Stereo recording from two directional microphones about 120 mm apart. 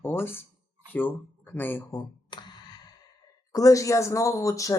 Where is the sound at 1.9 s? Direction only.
35° left (ahead or behind).